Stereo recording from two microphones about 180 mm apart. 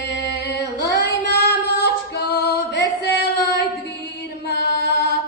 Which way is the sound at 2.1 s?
65° left (ahead or behind).